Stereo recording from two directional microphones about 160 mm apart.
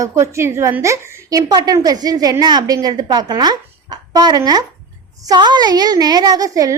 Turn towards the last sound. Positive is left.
turn(degrees=-20)  # may be behind; listen again after turning